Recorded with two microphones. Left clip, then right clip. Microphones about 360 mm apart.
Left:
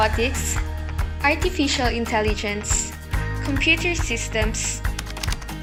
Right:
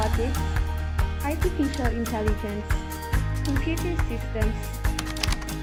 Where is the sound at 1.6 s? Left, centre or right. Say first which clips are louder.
Left 4 dB; left.